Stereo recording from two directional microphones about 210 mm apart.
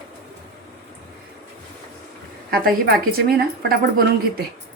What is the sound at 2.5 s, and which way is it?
A woman's voice, 45° right (ahead or behind).